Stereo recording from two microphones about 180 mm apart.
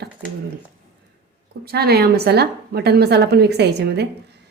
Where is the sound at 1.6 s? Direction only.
60° right (ahead or behind).